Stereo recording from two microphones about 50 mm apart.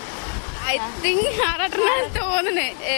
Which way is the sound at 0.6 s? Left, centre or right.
Left.